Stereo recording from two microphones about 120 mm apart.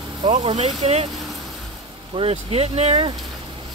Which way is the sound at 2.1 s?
50° right (ahead or behind).